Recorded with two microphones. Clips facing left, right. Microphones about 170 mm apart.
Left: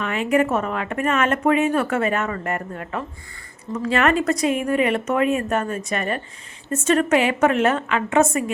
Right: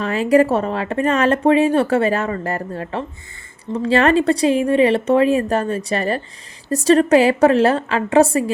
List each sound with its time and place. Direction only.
0.0 s speech: 35° right (ahead or behind)